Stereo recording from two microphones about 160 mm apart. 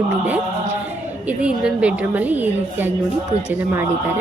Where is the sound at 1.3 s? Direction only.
5° right (ahead or behind).